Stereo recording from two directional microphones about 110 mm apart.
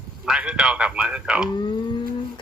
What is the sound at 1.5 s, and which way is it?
Speech, 40° left (ahead or behind).